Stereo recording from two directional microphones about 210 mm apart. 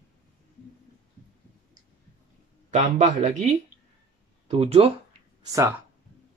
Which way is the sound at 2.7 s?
35° right (ahead or behind).